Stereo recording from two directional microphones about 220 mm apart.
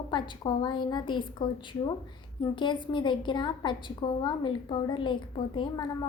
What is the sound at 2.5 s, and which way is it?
A woman's voice, 20° left (ahead or behind).